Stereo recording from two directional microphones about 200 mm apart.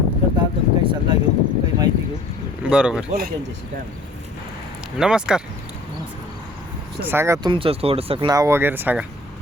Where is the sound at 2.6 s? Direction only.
5° right (ahead or behind).